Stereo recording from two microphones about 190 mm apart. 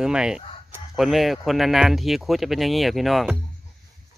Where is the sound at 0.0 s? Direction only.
5° right (ahead or behind).